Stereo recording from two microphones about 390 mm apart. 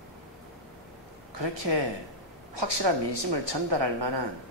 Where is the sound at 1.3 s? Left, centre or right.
Right.